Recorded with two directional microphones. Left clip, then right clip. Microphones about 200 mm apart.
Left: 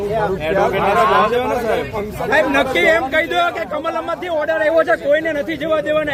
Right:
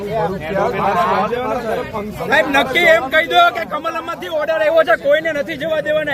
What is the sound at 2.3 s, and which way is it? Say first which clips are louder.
A man's voice: right 1 dB; 55° right (ahead or behind).